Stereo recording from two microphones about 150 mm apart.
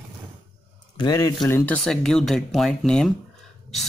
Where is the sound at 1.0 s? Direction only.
25° left (ahead or behind).